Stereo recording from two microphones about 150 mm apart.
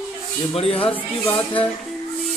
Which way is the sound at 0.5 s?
40° left (ahead or behind).